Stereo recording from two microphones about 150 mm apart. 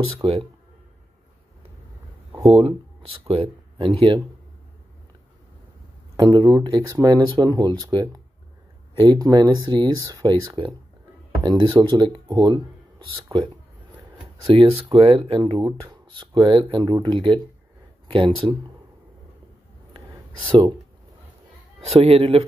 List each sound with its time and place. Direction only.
0.2 s speech: 40° right (ahead or behind)
3.3 s speech: 40° right (ahead or behind)
6.1 s speech: 30° right (ahead or behind)
13.9 s speech: 35° right (ahead or behind)
20.4 s speech: 30° right (ahead or behind)
21.8 s speech: 40° right (ahead or behind)